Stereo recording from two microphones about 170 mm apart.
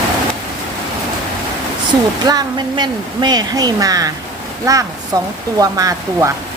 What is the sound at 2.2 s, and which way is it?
Speech, 25° right (ahead or behind).